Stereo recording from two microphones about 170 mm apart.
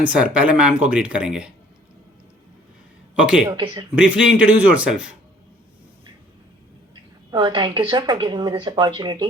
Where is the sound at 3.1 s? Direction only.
5° right (ahead or behind).